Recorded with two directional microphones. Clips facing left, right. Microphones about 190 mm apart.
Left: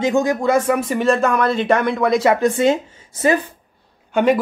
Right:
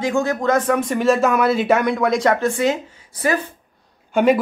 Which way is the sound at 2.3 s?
20° left (ahead or behind).